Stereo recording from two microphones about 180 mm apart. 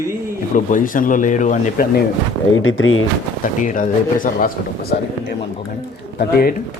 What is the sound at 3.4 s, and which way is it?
Speech, 50° left (ahead or behind).